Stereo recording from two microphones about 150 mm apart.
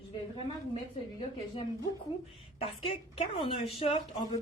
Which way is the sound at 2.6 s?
40° left (ahead or behind).